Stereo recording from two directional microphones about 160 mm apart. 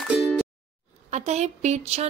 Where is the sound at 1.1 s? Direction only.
45° right (ahead or behind).